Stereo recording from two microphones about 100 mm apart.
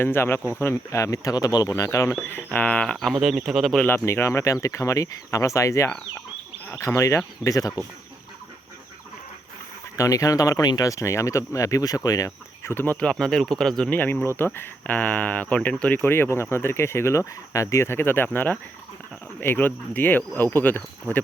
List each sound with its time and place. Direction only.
0.0 s speech: 25° left (ahead or behind)
2.5 s speech: 15° left (ahead or behind); by 3.8 s centre (ahead or behind)
3.8 s speech: 25° left (ahead or behind)
10.0 s speech: 35° left (ahead or behind)
12.7 s speech: 20° left (ahead or behind)
14.0 s speech: 20° left (ahead or behind)